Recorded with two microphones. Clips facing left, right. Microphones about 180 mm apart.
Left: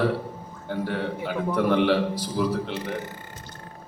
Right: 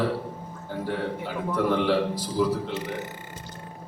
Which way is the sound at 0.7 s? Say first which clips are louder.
Left 1 dB; 70° left (ahead or behind).